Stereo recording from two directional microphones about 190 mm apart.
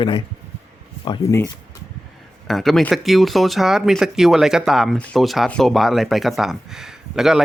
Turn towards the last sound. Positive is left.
turn(degrees=0)  # may be behind; listen again after turning